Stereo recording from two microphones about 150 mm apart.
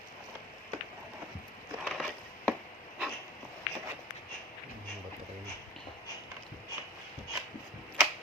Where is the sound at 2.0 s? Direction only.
5° left (ahead or behind).